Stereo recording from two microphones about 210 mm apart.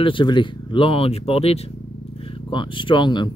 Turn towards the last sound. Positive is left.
turn(degrees=20)  # may be behind; listen again after turning